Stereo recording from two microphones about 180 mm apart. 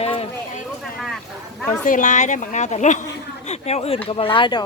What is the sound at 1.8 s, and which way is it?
A woman's voice, 45° left (ahead or behind).